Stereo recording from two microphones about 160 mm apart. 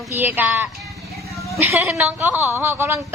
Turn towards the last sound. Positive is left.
turn(degrees=-15)  # may be behind; listen again after turning